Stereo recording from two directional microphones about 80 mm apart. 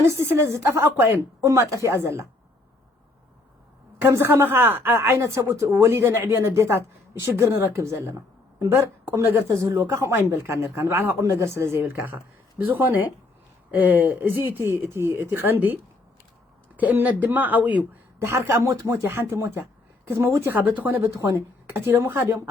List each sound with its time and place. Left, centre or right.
0.0 s a woman's voice: right
1.5 s a woman's voice: right
3.9 s a woman's voice: right
18.2 s a woman's voice: right
21.0 s a woman's voice: right